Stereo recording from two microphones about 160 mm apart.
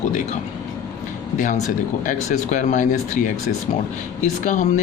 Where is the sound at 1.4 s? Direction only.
50° left (ahead or behind).